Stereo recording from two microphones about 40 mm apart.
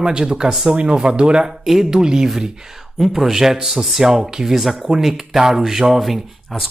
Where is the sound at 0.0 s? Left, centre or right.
Centre.